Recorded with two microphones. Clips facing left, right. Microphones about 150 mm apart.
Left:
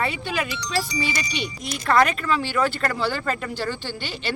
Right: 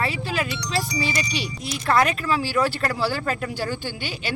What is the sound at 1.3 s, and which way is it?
Speech, 5° right (ahead or behind).